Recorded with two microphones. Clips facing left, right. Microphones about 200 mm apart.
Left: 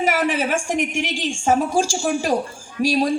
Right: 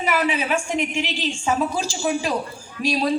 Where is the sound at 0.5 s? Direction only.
45° left (ahead or behind).